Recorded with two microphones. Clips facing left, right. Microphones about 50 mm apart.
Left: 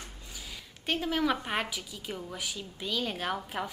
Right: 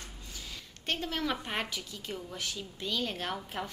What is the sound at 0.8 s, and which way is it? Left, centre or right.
A woman's voice, centre.